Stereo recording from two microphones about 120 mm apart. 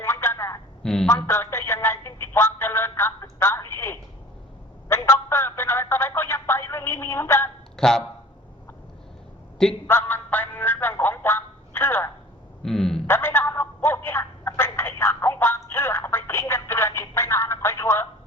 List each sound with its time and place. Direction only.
0.0 s telephone: 20° left (ahead or behind)
0.8 s a man's voice: 5° left (ahead or behind)
1.1 s telephone: 20° left (ahead or behind)
4.9 s a sound: 25° left (ahead or behind)
7.8 s speech: 5° left (ahead or behind)
9.8 s music: 15° left (ahead or behind)
12.6 s speech: 5° left (ahead or behind)
13.1 s a sound: 20° left (ahead or behind)